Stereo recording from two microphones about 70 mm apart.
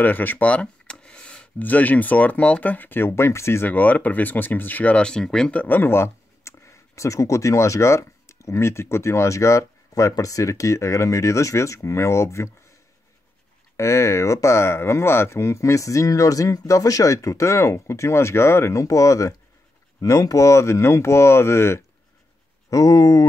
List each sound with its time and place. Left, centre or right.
0.0 s speech: left
3.6 s speech: left
5.0 s speech: centre
5.6 s speech: left
13.7 s speech: left
22.7 s speech: left